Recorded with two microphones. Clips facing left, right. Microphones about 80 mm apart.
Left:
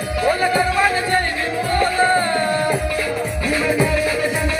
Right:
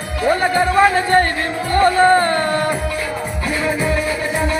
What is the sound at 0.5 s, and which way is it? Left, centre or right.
Music, right.